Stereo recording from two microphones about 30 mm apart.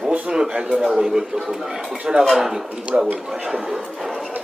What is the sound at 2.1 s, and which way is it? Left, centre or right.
Speech, centre.